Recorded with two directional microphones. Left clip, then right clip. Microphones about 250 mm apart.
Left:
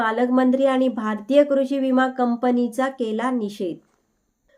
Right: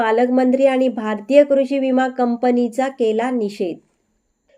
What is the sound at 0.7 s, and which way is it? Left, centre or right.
Speech, left.